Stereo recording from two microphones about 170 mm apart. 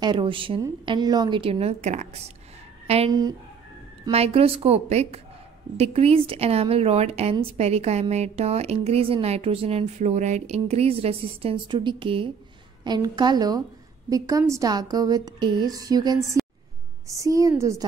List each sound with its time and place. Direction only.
0.0 s a woman's voice: 30° right (ahead or behind)
3.1 s a woman's voice: 20° right (ahead or behind)
4.1 s a woman's voice: 35° right (ahead or behind); by 17.8 s 20° right (ahead or behind)